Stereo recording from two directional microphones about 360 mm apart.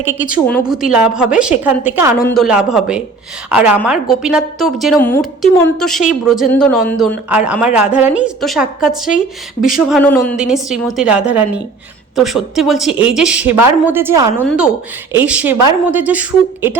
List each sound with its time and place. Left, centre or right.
0.0 s a woman's voice: centre